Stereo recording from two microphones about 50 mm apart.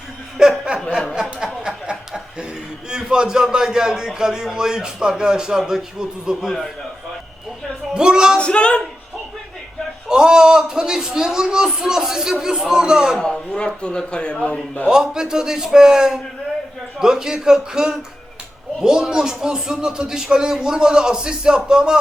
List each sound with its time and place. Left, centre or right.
0.4 s snicker: centre
1.1 s a sound: centre
1.6 s chuckle: centre
2.9 s a man's voice: centre
7.9 s music: centre
8.4 s speech: left
10.1 s a man's voice: centre
13.1 s a man's voice: centre
15.0 s a man's voice: centre